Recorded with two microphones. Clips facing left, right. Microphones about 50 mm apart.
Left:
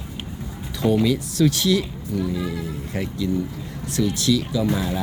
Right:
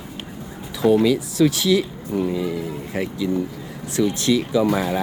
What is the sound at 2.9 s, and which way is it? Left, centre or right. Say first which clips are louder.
Speech: right 2 dB; centre.